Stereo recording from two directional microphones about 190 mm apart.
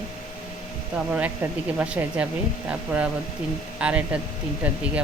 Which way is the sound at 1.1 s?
5° right (ahead or behind).